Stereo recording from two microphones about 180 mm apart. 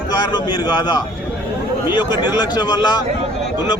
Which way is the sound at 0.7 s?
25° left (ahead or behind).